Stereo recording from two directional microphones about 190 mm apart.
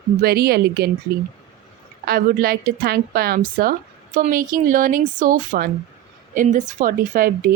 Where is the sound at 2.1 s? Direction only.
50° right (ahead or behind).